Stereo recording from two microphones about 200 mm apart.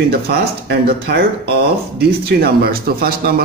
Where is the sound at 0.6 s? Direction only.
55° right (ahead or behind).